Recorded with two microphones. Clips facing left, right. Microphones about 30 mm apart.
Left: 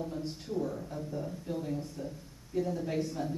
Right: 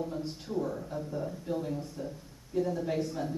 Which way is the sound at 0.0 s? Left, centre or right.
Centre.